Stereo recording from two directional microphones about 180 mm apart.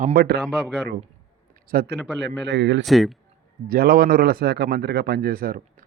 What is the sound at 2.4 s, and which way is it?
Speech, 75° right (ahead or behind).